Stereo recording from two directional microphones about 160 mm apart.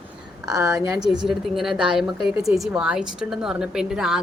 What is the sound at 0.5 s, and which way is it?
Speech, 20° right (ahead or behind).